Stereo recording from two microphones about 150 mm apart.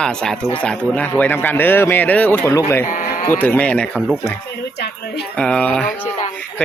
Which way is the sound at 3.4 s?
10° left (ahead or behind).